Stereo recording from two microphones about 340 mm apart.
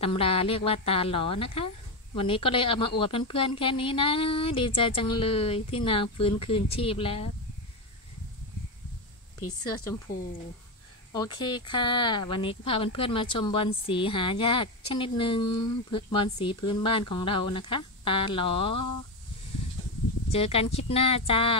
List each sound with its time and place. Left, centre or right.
0.0 s a woman's voice: centre
11.1 s a woman's voice: centre
20.2 s a woman's voice: centre